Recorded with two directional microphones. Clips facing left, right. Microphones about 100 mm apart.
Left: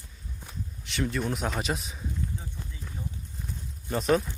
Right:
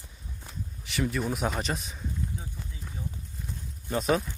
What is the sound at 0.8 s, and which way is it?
Speech, centre (ahead or behind).